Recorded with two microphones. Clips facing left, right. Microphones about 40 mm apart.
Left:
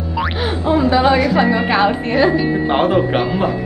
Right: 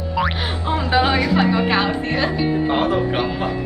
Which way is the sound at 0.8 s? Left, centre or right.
Centre.